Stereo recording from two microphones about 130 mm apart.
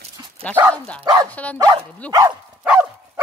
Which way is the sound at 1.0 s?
30° right (ahead or behind).